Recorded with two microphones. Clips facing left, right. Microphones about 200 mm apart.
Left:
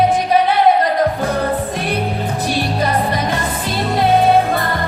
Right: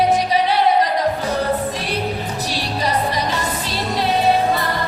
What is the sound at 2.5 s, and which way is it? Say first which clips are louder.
Music: left 3 dB; 55° left (ahead or behind).